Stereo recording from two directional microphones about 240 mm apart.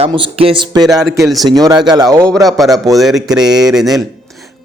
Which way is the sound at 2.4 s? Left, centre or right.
Centre.